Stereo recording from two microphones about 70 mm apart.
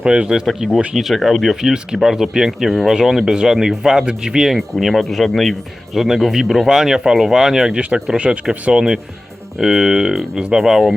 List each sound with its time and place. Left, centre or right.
0.0 s speech: centre
0.9 s speech: centre
7.8 s speech: centre